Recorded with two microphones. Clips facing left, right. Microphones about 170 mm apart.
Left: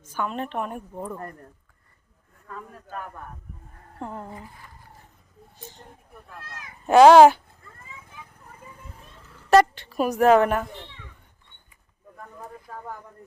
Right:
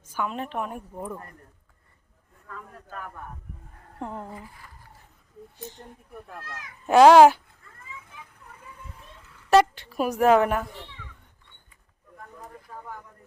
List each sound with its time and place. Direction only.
0.1 s a woman's voice: 5° right (ahead or behind)
6.8 s a woman's voice: centre (ahead or behind)
9.5 s a woman's voice: 5° right (ahead or behind)
12.7 s a sound: 50° left (ahead or behind)